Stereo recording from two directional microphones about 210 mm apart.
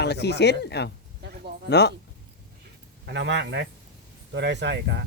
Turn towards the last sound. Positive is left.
turn(degrees=-55)  # may be behind; listen again after turning